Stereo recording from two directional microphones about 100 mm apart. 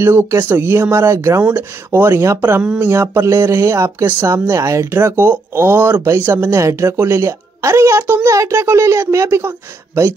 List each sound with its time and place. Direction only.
0.0 s speech: 25° right (ahead or behind)